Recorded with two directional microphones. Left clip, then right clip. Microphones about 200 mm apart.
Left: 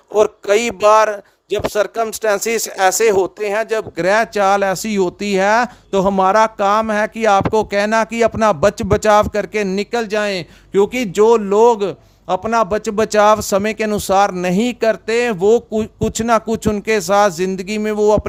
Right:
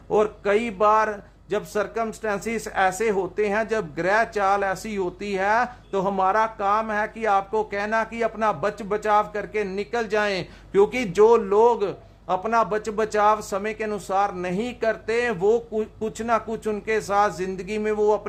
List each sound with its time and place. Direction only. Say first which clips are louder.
0.2 s a man's voice: left 9 dB; 50° left (ahead or behind)